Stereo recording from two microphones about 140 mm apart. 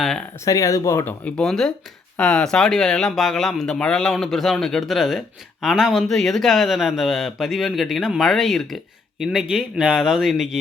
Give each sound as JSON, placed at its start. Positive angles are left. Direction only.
{"t": 0.0, "sound": "speech", "side_deg": 0}
{"t": 0.4, "sound": "speech", "side_deg": 25}
{"t": 1.2, "sound": "speech", "side_deg": 5}